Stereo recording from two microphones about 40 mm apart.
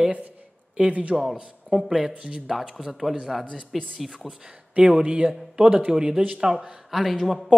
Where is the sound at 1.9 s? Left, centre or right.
Centre.